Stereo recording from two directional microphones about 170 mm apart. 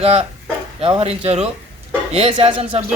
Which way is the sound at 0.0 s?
35° right (ahead or behind).